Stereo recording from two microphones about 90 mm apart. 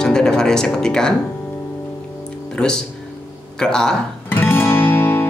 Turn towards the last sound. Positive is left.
turn(degrees=20)  # may be behind; listen again after turning